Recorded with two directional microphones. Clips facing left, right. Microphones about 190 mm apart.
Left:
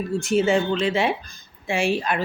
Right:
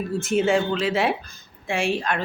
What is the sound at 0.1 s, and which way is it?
Speech, centre (ahead or behind).